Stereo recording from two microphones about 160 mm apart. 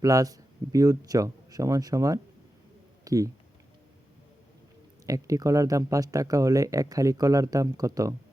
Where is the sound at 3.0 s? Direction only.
20° right (ahead or behind).